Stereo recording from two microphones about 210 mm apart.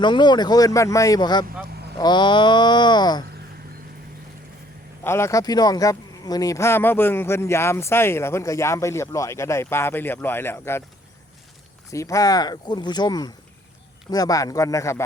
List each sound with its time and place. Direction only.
0.0 s speech: 20° left (ahead or behind)
5.0 s speech: 10° left (ahead or behind)
11.9 s speech: 15° left (ahead or behind)